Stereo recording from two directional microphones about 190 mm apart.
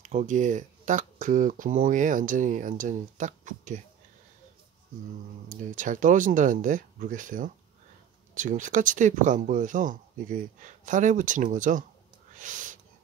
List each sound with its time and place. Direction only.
0.0 s speech: 40° right (ahead or behind)
5.5 s speech: 45° right (ahead or behind)